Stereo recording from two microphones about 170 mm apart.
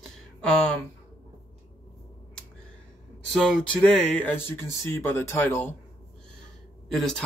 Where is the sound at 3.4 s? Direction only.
Centre (ahead or behind).